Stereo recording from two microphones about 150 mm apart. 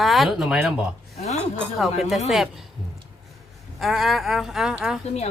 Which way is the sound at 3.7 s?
Centre (ahead or behind).